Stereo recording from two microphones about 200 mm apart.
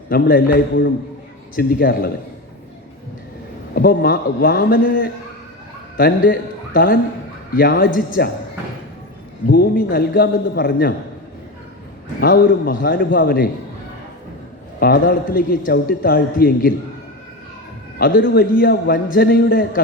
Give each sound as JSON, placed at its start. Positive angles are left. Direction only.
{"t": 0.1, "sound": "a man's voice", "side_deg": 45}
{"t": 1.5, "sound": "a man's voice", "side_deg": 45}
{"t": 3.8, "sound": "a man's voice", "side_deg": 50}
{"t": 9.5, "sound": "a man's voice", "side_deg": 45}
{"t": 12.2, "sound": "a man's voice", "side_deg": 45}
{"t": 14.8, "sound": "a man's voice", "side_deg": 45}
{"t": 18.3, "sound": "a man's voice", "side_deg": 50}